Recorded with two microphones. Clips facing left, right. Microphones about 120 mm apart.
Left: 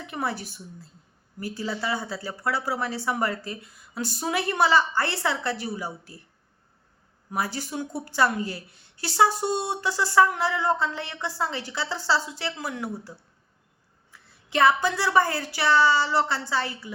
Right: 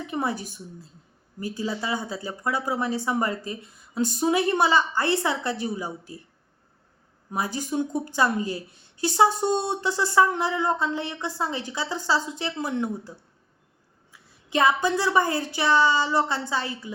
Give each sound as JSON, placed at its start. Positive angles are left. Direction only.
{"t": 0.1, "sound": "a woman's voice", "side_deg": -20}
{"t": 7.3, "sound": "a woman's voice", "side_deg": -20}